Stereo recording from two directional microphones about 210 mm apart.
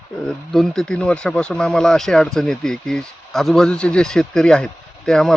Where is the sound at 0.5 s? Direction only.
Centre (ahead or behind).